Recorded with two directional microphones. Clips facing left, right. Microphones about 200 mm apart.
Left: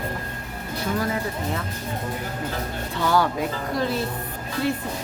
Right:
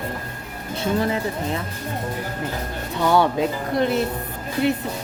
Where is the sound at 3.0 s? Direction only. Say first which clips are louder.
Right 4 dB; 20° right (ahead or behind).